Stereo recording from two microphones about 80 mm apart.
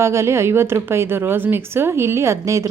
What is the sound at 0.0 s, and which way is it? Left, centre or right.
A woman's voice, right.